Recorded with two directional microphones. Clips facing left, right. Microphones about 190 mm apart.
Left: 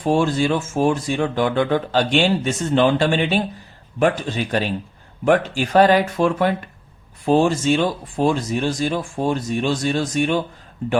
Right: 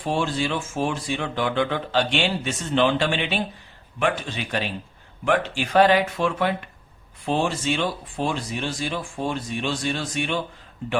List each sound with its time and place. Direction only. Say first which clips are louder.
0.0 s speech: left 6 dB; 45° left (ahead or behind)